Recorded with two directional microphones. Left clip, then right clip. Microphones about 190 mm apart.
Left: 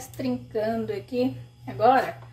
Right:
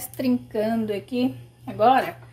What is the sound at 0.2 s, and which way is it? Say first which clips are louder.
A woman's voice: right 3 dB; 50° right (ahead or behind).